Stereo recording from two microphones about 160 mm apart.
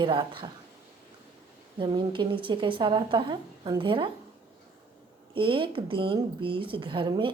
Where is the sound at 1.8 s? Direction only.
30° right (ahead or behind).